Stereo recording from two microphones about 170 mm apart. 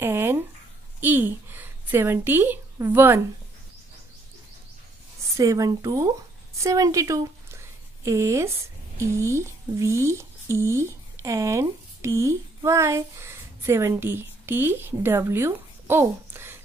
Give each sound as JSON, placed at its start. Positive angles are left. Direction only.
{"t": 0.0, "sound": "a sound", "side_deg": -15}
{"t": 1.0, "sound": "a woman's voice", "side_deg": -10}
{"t": 5.3, "sound": "a woman's voice", "side_deg": -20}